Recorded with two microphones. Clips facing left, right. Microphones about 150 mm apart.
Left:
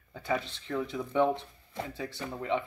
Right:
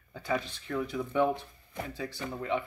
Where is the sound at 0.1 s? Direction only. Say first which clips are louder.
Even; 25° left (ahead or behind).